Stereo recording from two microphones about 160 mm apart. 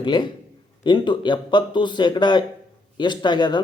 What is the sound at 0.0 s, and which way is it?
Speech, 30° left (ahead or behind).